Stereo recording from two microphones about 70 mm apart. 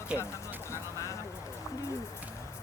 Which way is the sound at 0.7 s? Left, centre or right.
Left.